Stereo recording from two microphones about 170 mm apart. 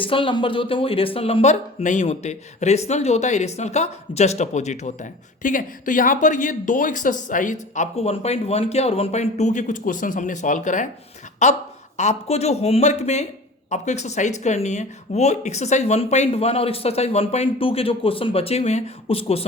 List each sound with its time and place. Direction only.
0.0 s speech: 30° left (ahead or behind)